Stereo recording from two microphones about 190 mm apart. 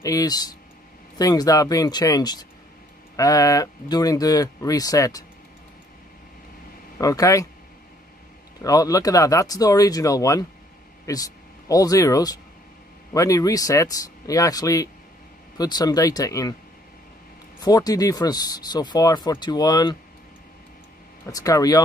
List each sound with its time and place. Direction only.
0.0 s speech: 20° left (ahead or behind)
7.0 s speech: 20° left (ahead or behind)
8.6 s speech: 20° left (ahead or behind)
17.6 s speech: 20° left (ahead or behind)
21.3 s speech: 20° left (ahead or behind)